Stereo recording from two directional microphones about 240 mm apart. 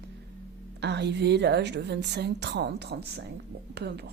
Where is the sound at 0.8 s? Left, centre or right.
Right.